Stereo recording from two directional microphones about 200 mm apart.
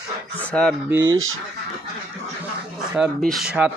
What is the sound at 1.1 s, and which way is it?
Speech, 85° right.